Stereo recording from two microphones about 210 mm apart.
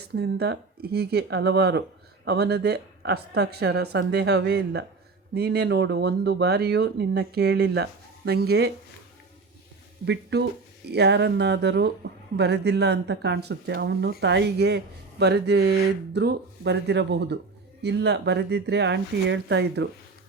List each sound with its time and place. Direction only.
0.1 s speech: 50° right (ahead or behind)
10.1 s speech: 55° right (ahead or behind)